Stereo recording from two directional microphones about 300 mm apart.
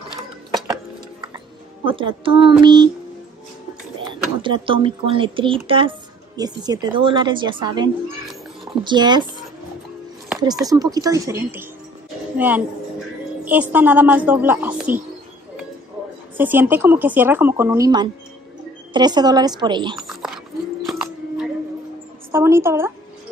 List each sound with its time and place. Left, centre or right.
1.9 s a woman's voice: centre
4.0 s a woman's voice: centre
10.5 s a woman's voice: centre
16.3 s a woman's voice: centre
20.8 s music: centre
22.3 s a woman's voice: centre